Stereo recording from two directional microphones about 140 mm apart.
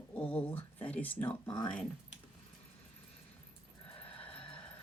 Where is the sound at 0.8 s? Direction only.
10° left (ahead or behind).